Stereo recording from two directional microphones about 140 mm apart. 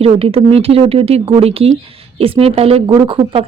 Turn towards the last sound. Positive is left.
turn(degrees=-40)  # may be behind; listen again after turning